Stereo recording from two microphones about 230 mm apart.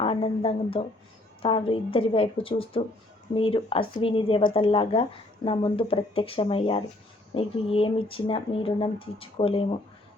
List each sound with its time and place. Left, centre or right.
0.0 s speech: left